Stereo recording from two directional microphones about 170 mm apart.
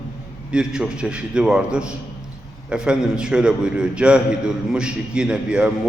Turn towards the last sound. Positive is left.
turn(degrees=-5)  # may be behind; listen again after turning